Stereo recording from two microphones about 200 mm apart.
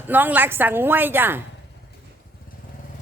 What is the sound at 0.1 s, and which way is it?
A woman's voice, 10° right (ahead or behind).